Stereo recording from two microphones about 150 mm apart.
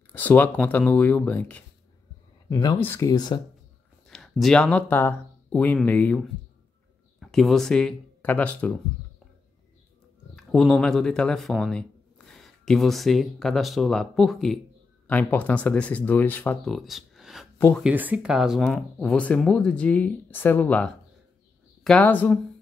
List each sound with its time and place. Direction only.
0.1 s speech: 10° left (ahead or behind)
2.8 s speech: 15° left (ahead or behind)
4.1 s speech: centre (ahead or behind)
10.3 s speech: centre (ahead or behind)
16.6 s speech: centre (ahead or behind)